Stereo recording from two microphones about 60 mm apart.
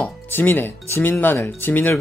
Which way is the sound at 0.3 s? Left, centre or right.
Left.